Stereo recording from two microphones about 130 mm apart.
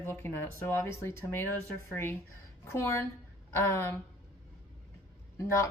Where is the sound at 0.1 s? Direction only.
15° left (ahead or behind).